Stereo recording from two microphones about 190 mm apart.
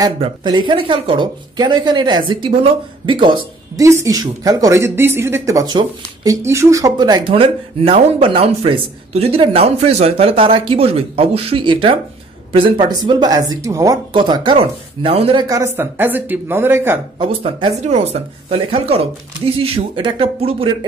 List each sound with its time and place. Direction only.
0.0 s speech: 25° right (ahead or behind)
15.4 s speech: 15° right (ahead or behind)
17.2 s speech: 25° right (ahead or behind)